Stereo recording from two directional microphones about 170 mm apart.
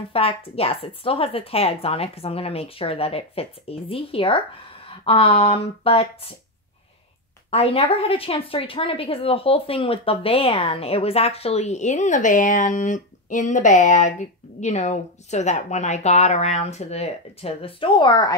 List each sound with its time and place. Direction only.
0.1 s a woman's voice: 35° left (ahead or behind)
7.5 s a woman's voice: 35° left (ahead or behind)